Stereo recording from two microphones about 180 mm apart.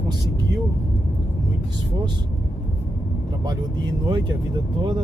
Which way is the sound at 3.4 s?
25° right (ahead or behind).